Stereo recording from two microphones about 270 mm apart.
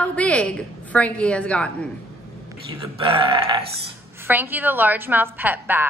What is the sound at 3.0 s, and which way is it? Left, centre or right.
Mantra, centre.